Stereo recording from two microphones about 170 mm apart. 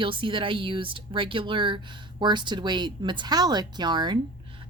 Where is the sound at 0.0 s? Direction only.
30° right (ahead or behind).